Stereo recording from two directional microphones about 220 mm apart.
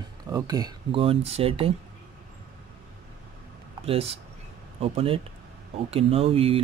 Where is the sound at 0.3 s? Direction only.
15° right (ahead or behind).